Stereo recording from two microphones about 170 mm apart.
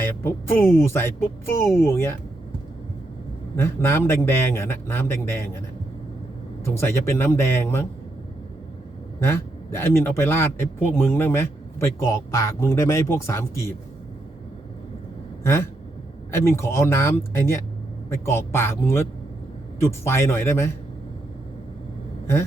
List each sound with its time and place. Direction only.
0.0 s a man's voice: 15° left (ahead or behind)
3.5 s a man's voice: 15° left (ahead or behind)
6.7 s a man's voice: 15° left (ahead or behind)
9.2 s a man's voice: 15° left (ahead or behind)
16.3 s a man's voice: 15° left (ahead or behind)